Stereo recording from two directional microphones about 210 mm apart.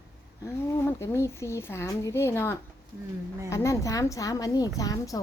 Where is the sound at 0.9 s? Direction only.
15° left (ahead or behind).